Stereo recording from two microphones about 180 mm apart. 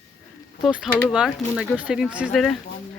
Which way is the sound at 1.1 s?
5° right (ahead or behind).